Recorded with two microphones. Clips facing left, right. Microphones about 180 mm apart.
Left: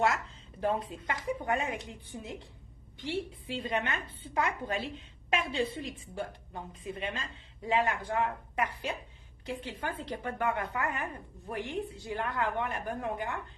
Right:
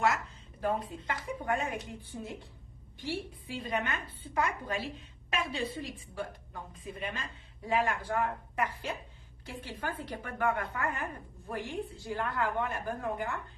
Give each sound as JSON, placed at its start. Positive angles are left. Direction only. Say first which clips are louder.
{"t": 0.6, "sound": "a woman's voice", "louder": "left 1 dB", "side_deg": 25}